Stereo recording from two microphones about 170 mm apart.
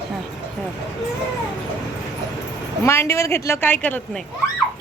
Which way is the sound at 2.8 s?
15° left (ahead or behind).